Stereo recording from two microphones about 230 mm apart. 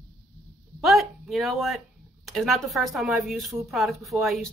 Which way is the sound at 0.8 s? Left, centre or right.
Centre.